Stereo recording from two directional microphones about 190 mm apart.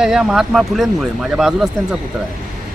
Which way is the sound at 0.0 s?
5° right (ahead or behind).